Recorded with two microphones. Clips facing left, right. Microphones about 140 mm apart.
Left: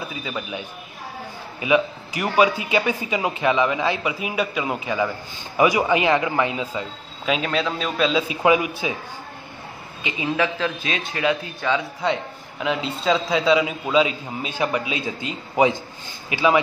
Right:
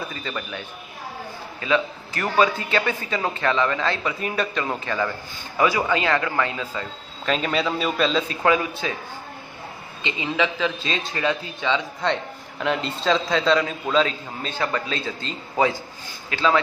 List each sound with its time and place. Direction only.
0.1 s a man's voice: 10° left (ahead or behind)
7.3 s a man's voice: centre (ahead or behind)
10.0 s a man's voice: 10° left (ahead or behind)